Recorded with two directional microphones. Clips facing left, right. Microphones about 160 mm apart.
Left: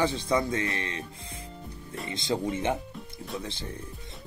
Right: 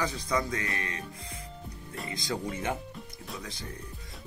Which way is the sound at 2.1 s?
25° left (ahead or behind).